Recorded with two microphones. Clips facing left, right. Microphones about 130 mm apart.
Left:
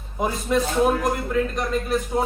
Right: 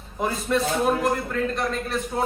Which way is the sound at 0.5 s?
5° left (ahead or behind).